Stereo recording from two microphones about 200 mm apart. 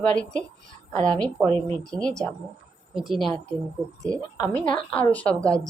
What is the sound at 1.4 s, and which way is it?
Speech, 30° right (ahead or behind).